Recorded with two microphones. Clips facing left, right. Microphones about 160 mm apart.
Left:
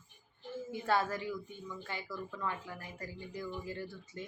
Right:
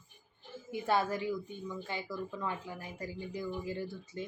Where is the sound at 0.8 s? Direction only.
20° right (ahead or behind).